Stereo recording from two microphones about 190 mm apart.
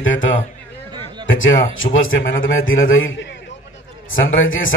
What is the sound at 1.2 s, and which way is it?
A man's voice, 90° left.